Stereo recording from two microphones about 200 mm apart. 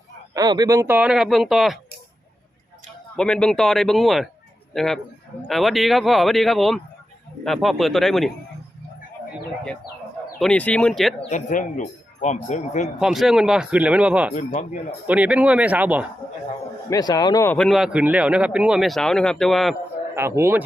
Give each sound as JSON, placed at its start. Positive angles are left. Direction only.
{"t": 0.3, "sound": "speech", "side_deg": -20}
{"t": 3.2, "sound": "speech", "side_deg": 5}
{"t": 10.4, "sound": "speech", "side_deg": 5}
{"t": 11.2, "sound": "speech", "side_deg": 35}
{"t": 13.0, "sound": "speech", "side_deg": 0}
{"t": 16.9, "sound": "speech", "side_deg": 20}
{"t": 20.1, "sound": "speech", "side_deg": -15}